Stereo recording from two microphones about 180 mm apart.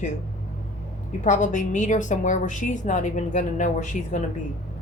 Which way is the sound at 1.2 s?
45° left (ahead or behind).